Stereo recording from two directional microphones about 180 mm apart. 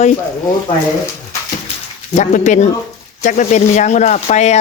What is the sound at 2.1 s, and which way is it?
Speech, 40° left (ahead or behind).